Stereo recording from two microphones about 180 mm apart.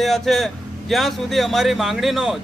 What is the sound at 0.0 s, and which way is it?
Speech, centre (ahead or behind).